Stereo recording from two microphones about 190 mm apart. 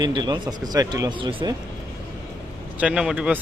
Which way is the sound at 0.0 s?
20° right (ahead or behind).